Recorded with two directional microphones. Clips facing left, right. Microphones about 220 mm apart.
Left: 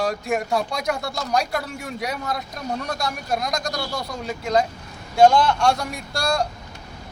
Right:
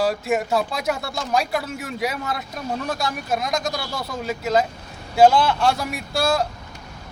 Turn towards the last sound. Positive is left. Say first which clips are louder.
# right 2 dB
turn(degrees=-5)  # may be behind; listen again after turning